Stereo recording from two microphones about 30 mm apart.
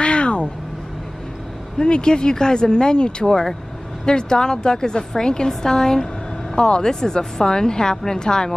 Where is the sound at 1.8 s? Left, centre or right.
Left.